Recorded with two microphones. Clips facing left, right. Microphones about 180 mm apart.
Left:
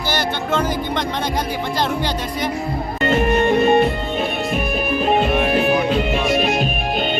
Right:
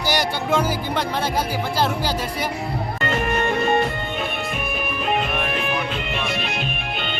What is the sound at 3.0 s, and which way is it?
Music, 20° left (ahead or behind).